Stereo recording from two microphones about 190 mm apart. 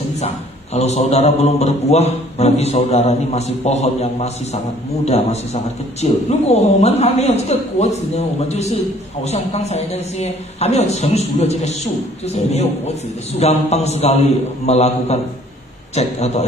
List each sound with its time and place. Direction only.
0.7 s a man's voice: 35° left (ahead or behind)